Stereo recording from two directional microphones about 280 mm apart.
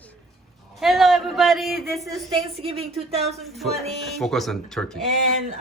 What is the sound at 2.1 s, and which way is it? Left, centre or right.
A woman's voice, centre.